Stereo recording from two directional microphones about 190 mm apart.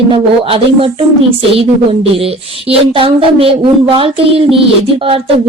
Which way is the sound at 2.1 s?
30° right (ahead or behind).